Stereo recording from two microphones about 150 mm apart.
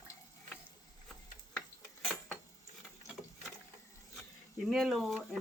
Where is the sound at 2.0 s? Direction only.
Centre (ahead or behind).